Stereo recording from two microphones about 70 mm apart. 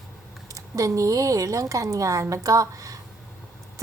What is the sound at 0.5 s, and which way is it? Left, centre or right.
A woman's voice, right.